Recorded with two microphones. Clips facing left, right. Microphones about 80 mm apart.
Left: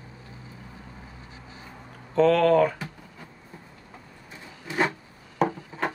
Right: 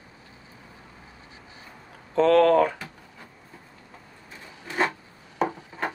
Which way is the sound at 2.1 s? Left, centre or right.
Centre.